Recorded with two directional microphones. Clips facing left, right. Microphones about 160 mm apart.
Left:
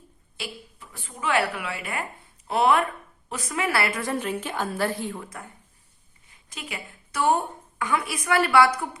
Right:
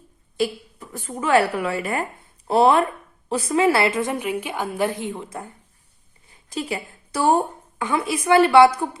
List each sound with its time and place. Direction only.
0.3 s a woman's voice: 45° right (ahead or behind); by 5.5 s 25° right (ahead or behind)
6.5 s a woman's voice: 35° right (ahead or behind)